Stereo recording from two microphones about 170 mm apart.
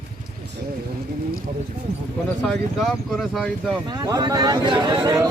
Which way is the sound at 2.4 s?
Centre (ahead or behind).